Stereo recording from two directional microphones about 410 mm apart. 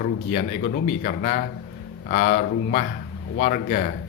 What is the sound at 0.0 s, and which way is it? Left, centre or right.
Speech, centre.